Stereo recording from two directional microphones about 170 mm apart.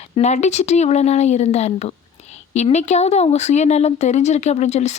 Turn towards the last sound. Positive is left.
turn(degrees=40)  # may be behind; listen again after turning